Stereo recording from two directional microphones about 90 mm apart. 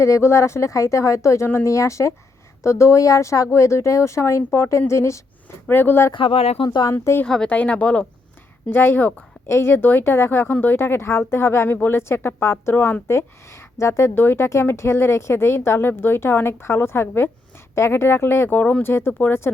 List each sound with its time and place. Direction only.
0.0 s speech: 30° left (ahead or behind)
6.1 s speech: 85° left
6.7 s speech: 50° left (ahead or behind)
6.9 s speech: 25° left (ahead or behind)
7.3 s speech: 10° left (ahead or behind)
8.7 s speech: 25° left (ahead or behind)